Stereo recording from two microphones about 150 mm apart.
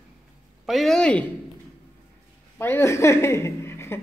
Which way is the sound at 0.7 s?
Centre (ahead or behind).